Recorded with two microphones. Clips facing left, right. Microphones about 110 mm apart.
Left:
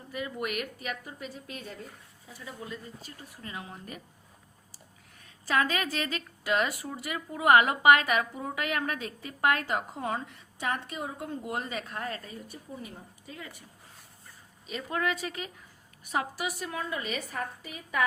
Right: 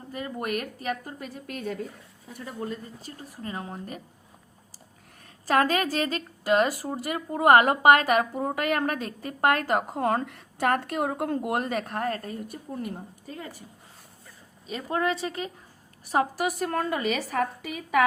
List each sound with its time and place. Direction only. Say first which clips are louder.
0.1 s a woman's voice: right 3 dB; 40° right (ahead or behind)
5.2 s a woman's voice: right 5 dB; 40° right (ahead or behind)
14.7 s a woman's voice: right 4 dB; 35° right (ahead or behind); by 16.9 s 55° right (ahead or behind)
16.9 s a woman's voice: right 7 dB; 80° right